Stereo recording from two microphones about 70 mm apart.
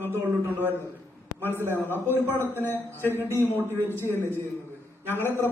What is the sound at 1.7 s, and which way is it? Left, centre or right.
A man's voice, left.